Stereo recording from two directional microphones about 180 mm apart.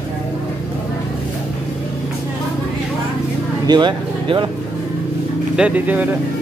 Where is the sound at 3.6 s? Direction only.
25° right (ahead or behind).